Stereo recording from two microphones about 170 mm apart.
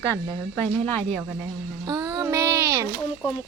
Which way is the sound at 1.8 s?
20° right (ahead or behind).